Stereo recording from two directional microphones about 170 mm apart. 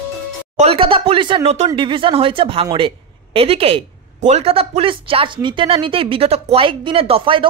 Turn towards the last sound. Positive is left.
turn(degrees=-30)  # may be behind; listen again after turning